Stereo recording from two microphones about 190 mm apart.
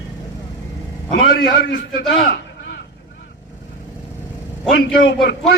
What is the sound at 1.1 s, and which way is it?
A man's voice, 60° left (ahead or behind).